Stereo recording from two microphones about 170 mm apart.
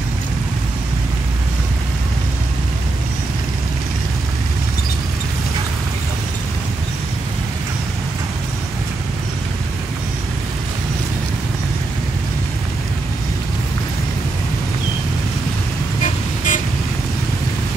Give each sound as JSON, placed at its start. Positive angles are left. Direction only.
{"t": 16.0, "sound": "vehicle", "side_deg": 50}